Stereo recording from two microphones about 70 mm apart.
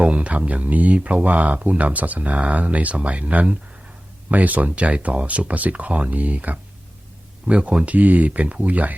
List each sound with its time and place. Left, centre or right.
0.0 s speech: centre